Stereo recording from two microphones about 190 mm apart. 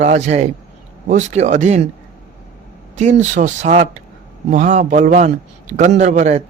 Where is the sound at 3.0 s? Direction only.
40° right (ahead or behind).